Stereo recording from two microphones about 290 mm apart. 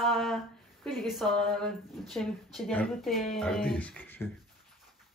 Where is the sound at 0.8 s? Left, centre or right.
Centre.